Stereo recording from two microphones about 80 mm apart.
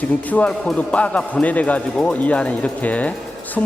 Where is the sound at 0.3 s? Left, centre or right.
Centre.